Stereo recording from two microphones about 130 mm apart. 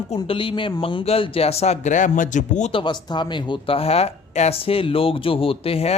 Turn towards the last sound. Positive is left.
turn(degrees=50)  # may be behind; listen again after turning